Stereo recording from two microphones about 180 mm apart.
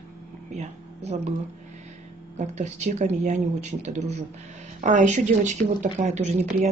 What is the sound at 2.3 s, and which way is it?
Speech, 40° right (ahead or behind).